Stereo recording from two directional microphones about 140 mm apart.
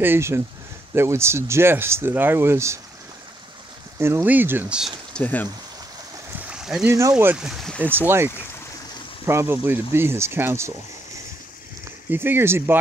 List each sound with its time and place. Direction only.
0.0 s speech: 15° right (ahead or behind)
4.0 s speech: 15° right (ahead or behind)
5.1 s speech: 10° left (ahead or behind)
6.5 s a sound: 5° right (ahead or behind)
6.9 s speech: 20° right (ahead or behind)
7.3 s speech: centre (ahead or behind)
7.8 s speech: 15° right (ahead or behind)
12.1 s speech: 15° right (ahead or behind)